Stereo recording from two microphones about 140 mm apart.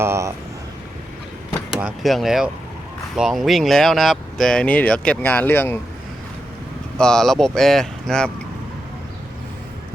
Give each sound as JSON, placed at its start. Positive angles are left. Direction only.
{"t": 0.0, "sound": "speech", "side_deg": -20}
{"t": 1.7, "sound": "speech", "side_deg": -5}
{"t": 7.0, "sound": "speech", "side_deg": 5}